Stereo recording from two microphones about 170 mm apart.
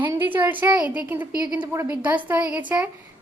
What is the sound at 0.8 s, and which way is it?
A woman's voice, 10° right (ahead or behind).